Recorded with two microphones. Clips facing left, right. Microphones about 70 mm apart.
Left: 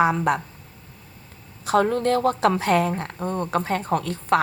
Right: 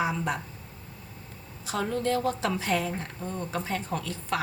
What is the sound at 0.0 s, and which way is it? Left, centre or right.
Speech, left.